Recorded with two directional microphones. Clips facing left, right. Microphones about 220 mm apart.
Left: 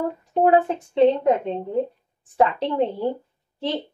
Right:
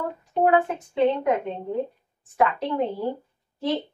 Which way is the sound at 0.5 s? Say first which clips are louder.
Left 3 dB; 30° left (ahead or behind).